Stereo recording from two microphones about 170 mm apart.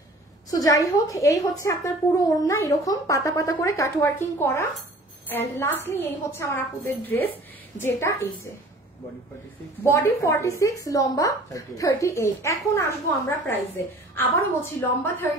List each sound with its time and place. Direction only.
0.5 s a woman's voice: 20° left (ahead or behind)
9.8 s a woman's voice: 15° left (ahead or behind)
14.1 s a woman's voice: 15° left (ahead or behind)